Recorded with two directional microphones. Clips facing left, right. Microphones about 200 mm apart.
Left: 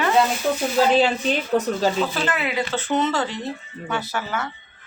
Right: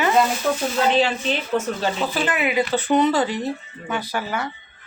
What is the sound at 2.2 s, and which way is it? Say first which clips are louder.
Speech: right 3 dB; 15° right (ahead or behind).